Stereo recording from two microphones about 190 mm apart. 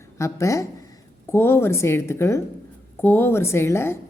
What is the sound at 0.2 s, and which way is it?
Speech, 15° left (ahead or behind).